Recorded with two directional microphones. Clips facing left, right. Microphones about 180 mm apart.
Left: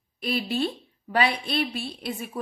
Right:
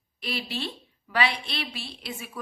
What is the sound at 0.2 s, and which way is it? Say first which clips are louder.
A woman's voice: left 6 dB; 50° left (ahead or behind).